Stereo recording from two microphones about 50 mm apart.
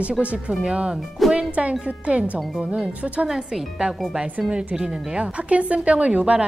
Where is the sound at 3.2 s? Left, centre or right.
Centre.